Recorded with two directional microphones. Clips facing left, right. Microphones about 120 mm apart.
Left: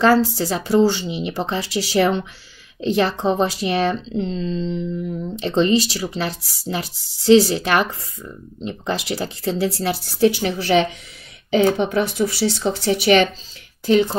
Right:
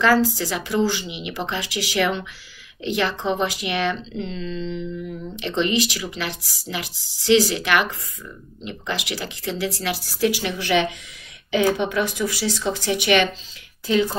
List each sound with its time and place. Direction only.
0.0 s speech: 30° left (ahead or behind)